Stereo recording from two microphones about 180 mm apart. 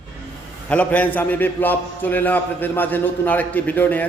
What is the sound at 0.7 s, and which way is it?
A man's voice, 10° left (ahead or behind).